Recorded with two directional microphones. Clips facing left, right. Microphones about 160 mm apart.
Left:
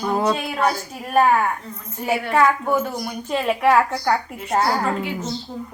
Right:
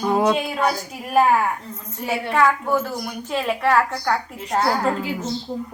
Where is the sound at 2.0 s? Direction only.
10° left (ahead or behind).